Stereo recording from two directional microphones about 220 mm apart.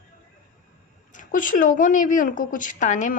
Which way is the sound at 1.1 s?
35° left (ahead or behind).